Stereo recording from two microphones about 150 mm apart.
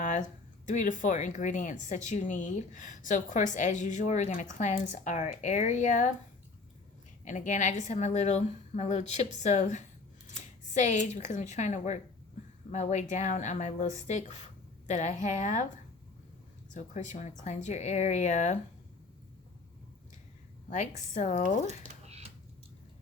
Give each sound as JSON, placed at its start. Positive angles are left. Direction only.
{"t": 0.0, "sound": "speech", "side_deg": 55}
{"t": 7.3, "sound": "speech", "side_deg": 55}
{"t": 16.7, "sound": "speech", "side_deg": 50}
{"t": 20.7, "sound": "a woman's voice", "side_deg": 50}
{"t": 21.7, "sound": "a sound", "side_deg": -45}